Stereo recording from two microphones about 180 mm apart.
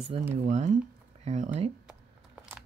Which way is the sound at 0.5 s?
40° right (ahead or behind).